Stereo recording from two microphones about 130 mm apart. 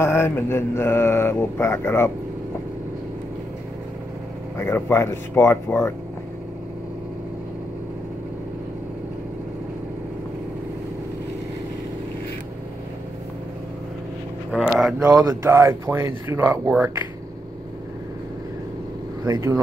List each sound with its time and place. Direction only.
0.0 s speech: 20° left (ahead or behind)
4.6 s speech: 20° left (ahead or behind)
14.5 s a sound: 5° right (ahead or behind)
15.0 s speech: 25° right (ahead or behind)